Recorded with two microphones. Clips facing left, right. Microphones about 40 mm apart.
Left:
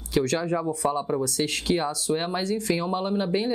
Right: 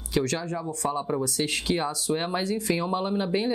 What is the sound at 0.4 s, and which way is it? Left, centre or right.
Speech, centre.